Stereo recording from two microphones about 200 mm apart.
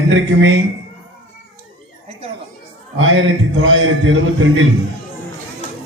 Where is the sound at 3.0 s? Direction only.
75° right (ahead or behind).